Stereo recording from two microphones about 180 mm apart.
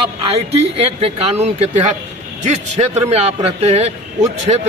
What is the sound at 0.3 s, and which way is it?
A man's voice, 35° right (ahead or behind).